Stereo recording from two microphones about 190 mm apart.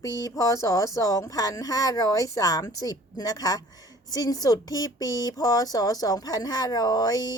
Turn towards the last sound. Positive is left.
turn(degrees=20)  # may be behind; listen again after turning